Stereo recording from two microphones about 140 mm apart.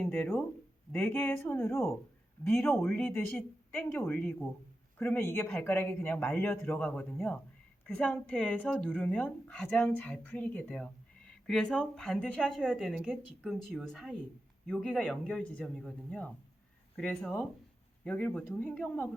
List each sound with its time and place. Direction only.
0.1 s speech: 15° left (ahead or behind)